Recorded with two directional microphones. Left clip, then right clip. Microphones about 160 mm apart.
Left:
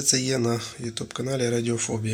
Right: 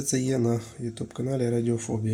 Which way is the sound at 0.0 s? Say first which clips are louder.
Left 3 dB; 25° right (ahead or behind).